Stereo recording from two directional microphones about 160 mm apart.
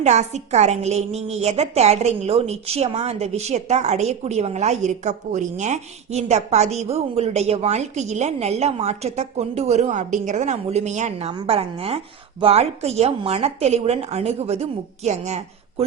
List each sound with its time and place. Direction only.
0.0 s a woman's voice: 45° right (ahead or behind)